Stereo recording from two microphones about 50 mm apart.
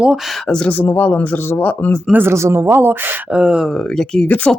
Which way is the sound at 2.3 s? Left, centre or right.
Right.